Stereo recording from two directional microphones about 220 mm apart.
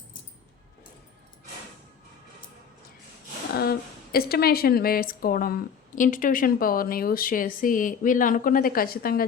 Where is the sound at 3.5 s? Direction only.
45° left (ahead or behind).